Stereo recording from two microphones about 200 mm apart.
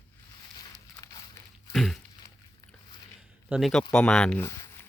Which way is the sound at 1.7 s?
Centre (ahead or behind).